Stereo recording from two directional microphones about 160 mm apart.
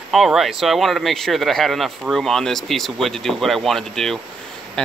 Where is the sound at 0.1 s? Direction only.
Centre (ahead or behind).